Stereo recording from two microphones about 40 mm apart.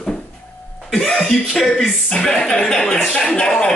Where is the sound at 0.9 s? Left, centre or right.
Centre.